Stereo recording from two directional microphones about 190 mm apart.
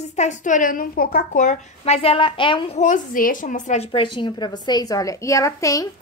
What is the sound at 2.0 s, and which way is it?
Speech, 25° left (ahead or behind).